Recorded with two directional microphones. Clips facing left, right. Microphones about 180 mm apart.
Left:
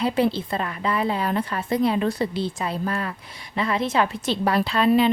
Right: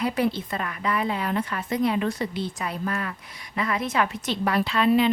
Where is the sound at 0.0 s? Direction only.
30° left (ahead or behind).